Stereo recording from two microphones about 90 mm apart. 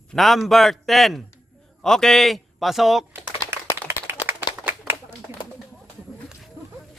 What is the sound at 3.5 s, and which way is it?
Clapping, 25° right (ahead or behind).